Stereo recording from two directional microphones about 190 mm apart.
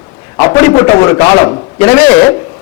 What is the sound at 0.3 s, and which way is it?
A man's voice, 15° left (ahead or behind).